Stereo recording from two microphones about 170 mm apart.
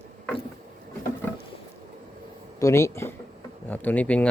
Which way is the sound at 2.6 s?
20° left (ahead or behind).